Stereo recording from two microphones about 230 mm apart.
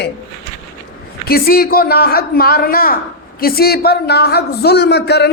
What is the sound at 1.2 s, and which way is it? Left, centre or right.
A man's voice, left.